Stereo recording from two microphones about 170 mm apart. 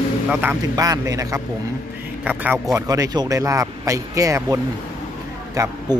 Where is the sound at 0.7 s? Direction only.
20° right (ahead or behind).